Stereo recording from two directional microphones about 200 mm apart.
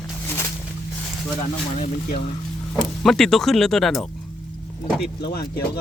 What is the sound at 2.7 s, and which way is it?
Speech, centre (ahead or behind).